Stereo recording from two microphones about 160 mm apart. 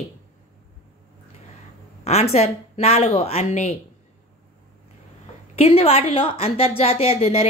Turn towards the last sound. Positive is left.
turn(degrees=35)  # may be behind; listen again after turning